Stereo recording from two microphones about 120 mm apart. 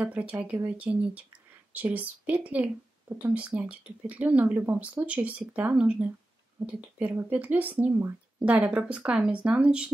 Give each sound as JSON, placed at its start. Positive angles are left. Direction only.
{"t": 0.0, "sound": "speech", "side_deg": -10}